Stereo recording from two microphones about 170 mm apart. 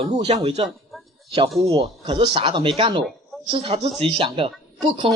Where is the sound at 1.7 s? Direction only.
30° right (ahead or behind).